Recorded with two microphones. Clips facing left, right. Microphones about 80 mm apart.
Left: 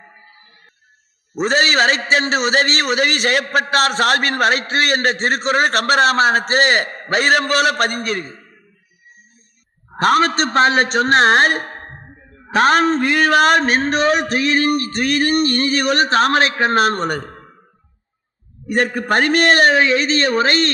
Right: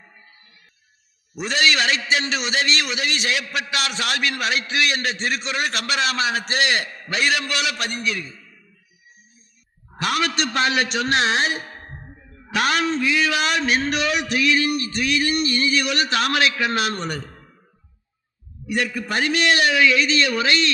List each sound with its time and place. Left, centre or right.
0.0 s music: left
1.3 s a man's voice: left
9.9 s a man's voice: left
18.6 s a man's voice: left